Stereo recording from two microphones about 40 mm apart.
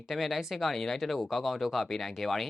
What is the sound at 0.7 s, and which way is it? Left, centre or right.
Speech, centre.